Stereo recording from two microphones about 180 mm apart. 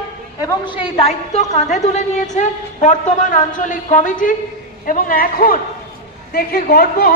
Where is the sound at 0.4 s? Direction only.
25° left (ahead or behind).